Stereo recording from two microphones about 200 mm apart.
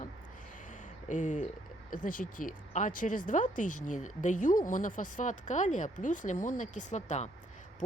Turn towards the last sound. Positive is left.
turn(degrees=35)  # may be behind; listen again after turning